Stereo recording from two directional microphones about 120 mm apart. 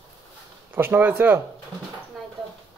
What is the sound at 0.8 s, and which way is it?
Speech, 20° right (ahead or behind).